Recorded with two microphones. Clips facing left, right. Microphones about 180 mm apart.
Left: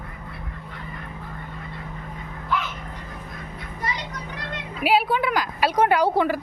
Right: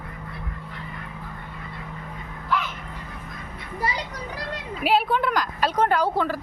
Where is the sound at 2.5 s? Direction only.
Centre (ahead or behind).